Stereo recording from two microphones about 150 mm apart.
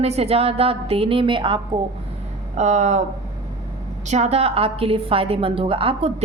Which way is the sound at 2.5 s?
50° right (ahead or behind).